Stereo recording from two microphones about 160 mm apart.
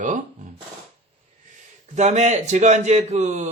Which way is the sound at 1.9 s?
45° right (ahead or behind).